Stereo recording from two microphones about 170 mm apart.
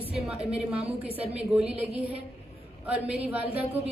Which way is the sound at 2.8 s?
10° right (ahead or behind).